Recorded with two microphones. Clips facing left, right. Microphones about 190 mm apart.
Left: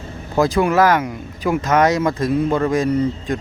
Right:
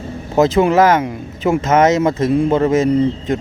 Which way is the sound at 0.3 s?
25° right (ahead or behind).